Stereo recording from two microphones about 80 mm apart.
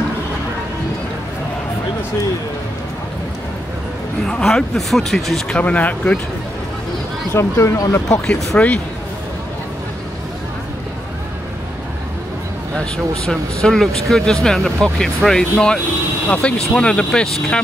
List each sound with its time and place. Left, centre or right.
4.3 s speech: centre
5.6 s speech: centre
7.3 s speech: left
8.5 s speech: centre
13.3 s speech: centre